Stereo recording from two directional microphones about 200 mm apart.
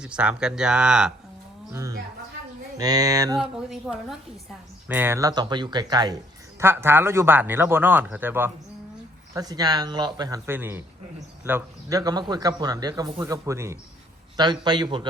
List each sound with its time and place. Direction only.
0.0 s speech: 5° right (ahead or behind)
1.7 s a man's voice: 15° right (ahead or behind)
3.3 s a man's voice: centre (ahead or behind); by 15.0 s 20° right (ahead or behind)